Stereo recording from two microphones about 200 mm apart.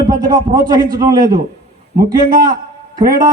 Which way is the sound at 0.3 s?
45° right (ahead or behind).